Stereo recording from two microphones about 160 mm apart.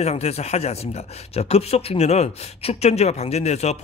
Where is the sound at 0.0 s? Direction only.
40° left (ahead or behind).